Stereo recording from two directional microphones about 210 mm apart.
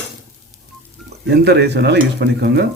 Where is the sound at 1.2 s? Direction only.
55° right (ahead or behind).